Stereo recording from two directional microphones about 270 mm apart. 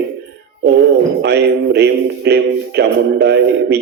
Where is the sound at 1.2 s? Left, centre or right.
Right.